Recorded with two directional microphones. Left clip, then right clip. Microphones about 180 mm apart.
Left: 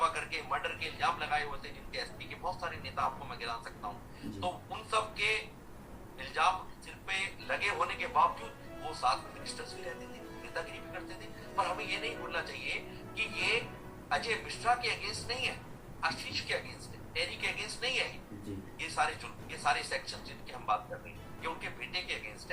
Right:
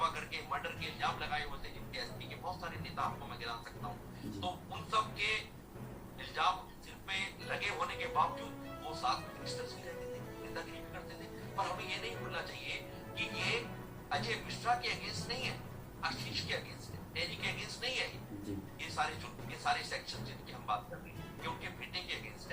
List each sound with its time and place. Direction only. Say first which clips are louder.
0.0 s a man's voice: left 4 dB; 50° left (ahead or behind)
2.6 s a man's voice: left 4 dB; 50° left (ahead or behind)
11.5 s a man's voice: left 5 dB; 50° left (ahead or behind)